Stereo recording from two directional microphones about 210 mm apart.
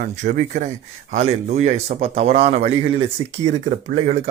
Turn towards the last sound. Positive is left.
turn(degrees=-30)  # may be behind; listen again after turning